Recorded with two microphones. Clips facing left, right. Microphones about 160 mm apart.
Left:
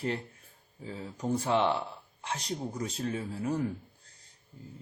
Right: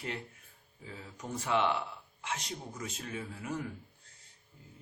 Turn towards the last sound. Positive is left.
turn(degrees=35)  # may be behind; listen again after turning